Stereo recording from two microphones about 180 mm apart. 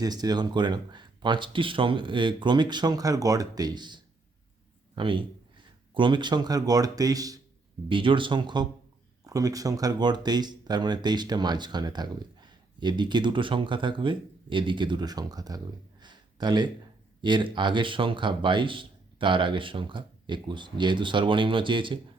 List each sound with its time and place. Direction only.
0.0 s speech: 20° right (ahead or behind)